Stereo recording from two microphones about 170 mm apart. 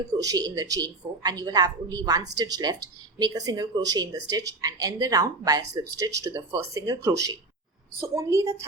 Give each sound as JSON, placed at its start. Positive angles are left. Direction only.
{"t": 0.2, "sound": "a woman's voice", "side_deg": -20}